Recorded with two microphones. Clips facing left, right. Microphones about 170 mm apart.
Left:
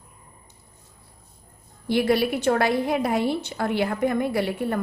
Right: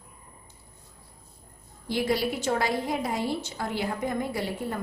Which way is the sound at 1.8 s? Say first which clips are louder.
Left 5 dB; 65° left (ahead or behind).